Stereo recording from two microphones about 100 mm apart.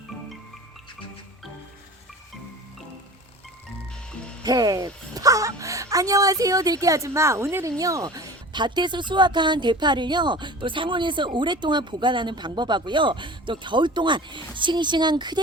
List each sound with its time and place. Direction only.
4.4 s speech: 40° right (ahead or behind)